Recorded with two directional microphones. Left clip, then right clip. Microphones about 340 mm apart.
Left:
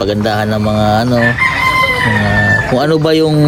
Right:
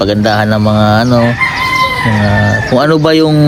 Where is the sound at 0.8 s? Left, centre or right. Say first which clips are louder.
Right 2 dB; centre.